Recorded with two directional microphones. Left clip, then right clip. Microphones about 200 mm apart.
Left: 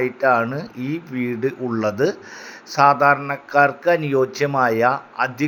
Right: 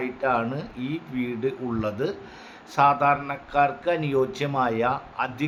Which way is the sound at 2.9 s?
25° left (ahead or behind).